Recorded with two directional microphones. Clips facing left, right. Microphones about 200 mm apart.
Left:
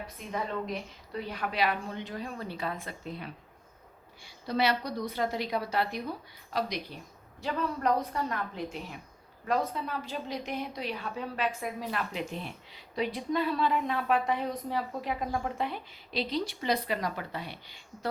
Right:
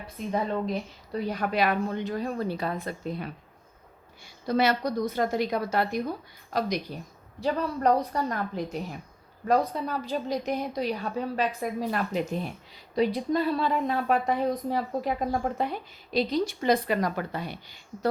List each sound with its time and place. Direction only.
0.3 s a woman's voice: 30° right (ahead or behind)
1.1 s a woman's voice: 45° right (ahead or behind)
4.4 s a woman's voice: 45° right (ahead or behind)